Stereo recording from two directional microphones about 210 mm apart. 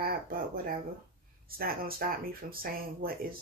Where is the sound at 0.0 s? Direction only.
45° right (ahead or behind).